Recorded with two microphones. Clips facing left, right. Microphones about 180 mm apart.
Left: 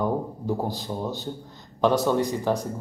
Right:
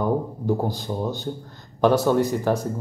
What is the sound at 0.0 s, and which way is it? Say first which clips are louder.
Speech: right 3 dB; centre (ahead or behind).